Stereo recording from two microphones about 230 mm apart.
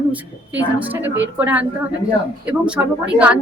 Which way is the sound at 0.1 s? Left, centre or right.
Centre.